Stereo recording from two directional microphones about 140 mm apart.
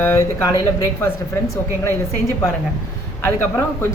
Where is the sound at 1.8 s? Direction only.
20° left (ahead or behind).